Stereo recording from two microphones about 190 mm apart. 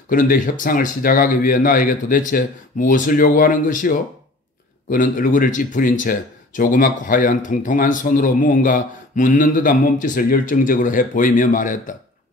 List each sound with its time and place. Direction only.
0.1 s speech: 45° left (ahead or behind)